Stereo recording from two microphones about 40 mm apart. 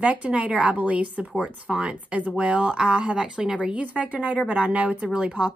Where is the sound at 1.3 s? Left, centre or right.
Right.